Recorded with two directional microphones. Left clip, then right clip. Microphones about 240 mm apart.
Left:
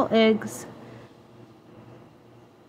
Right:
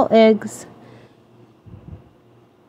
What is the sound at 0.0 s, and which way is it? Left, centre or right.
Speech, right.